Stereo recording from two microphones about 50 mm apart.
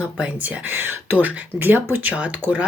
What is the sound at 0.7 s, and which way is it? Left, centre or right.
Speech, right.